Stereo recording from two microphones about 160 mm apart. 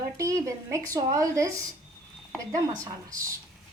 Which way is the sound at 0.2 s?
20° right (ahead or behind).